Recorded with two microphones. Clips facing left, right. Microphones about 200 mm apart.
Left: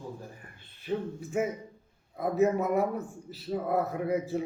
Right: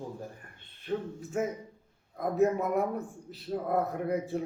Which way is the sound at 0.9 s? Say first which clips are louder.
Left 1 dB; 10° left (ahead or behind).